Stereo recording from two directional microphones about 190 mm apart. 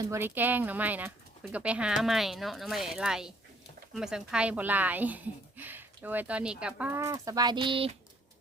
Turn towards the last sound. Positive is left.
turn(degrees=-25)  # may be behind; listen again after turning